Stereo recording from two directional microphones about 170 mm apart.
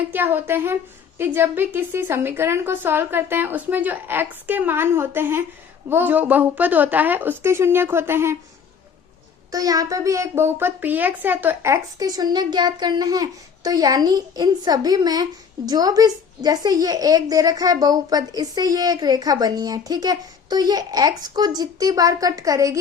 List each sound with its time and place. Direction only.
0.1 s a woman's voice: 10° right (ahead or behind)
9.5 s speech: 20° right (ahead or behind)